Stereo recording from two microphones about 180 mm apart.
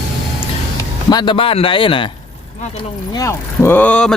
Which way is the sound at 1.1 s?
25° left (ahead or behind).